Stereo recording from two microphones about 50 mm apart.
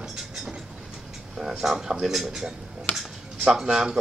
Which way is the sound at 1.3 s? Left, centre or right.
Centre.